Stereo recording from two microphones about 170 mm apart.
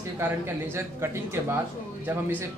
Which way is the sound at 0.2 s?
15° right (ahead or behind).